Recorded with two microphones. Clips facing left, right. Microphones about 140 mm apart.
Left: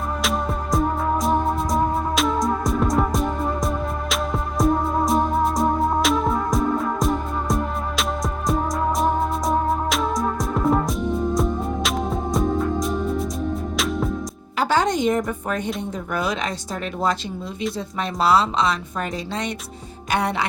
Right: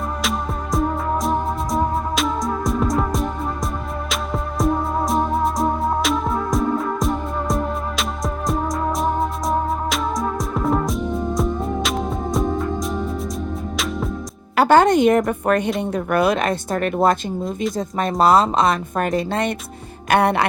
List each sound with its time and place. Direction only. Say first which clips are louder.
0.2 s music: even; centre (ahead or behind)
14.5 s music: right 7 dB; 60° right (ahead or behind)
16.0 s speech: right 7 dB; 60° right (ahead or behind)